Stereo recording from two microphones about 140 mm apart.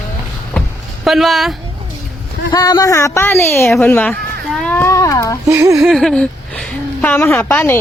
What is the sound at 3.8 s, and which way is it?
Speech, 10° left (ahead or behind).